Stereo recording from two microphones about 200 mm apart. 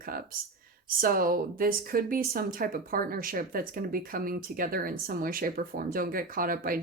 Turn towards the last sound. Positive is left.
turn(degrees=-45)  # may be behind; listen again after turning